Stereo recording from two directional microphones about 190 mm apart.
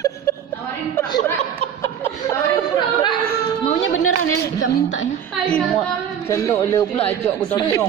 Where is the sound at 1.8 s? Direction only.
15° left (ahead or behind).